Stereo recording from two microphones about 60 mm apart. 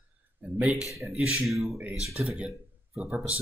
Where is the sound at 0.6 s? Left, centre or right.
Right.